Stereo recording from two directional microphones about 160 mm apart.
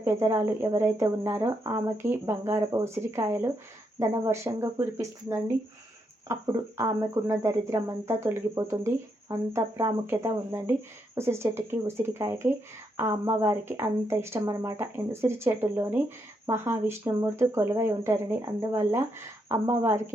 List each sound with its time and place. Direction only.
0.0 s speech: 20° right (ahead or behind)